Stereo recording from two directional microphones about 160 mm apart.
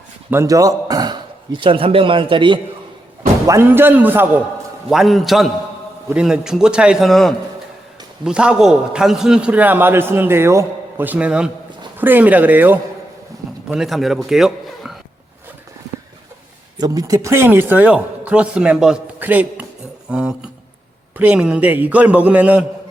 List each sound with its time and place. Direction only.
0.3 s speech: 20° right (ahead or behind)
3.4 s a man's voice: 15° right (ahead or behind)
4.9 s a man's voice: centre (ahead or behind)
16.7 s a man's voice: 25° right (ahead or behind)
20.1 s a sound: 5° right (ahead or behind)
21.2 s a man's voice: 5° right (ahead or behind)